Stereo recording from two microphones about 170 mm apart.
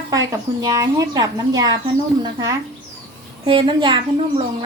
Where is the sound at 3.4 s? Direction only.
30° right (ahead or behind).